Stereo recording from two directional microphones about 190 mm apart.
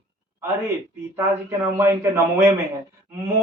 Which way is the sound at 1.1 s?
15° right (ahead or behind).